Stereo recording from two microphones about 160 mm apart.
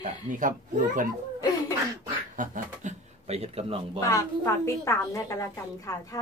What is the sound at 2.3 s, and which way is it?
Speech, 55° right (ahead or behind).